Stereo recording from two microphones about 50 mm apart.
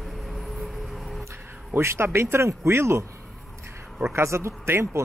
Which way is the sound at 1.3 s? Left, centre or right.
Right.